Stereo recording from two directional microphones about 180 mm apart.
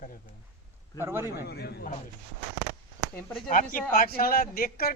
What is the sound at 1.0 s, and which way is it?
Speech, 15° right (ahead or behind).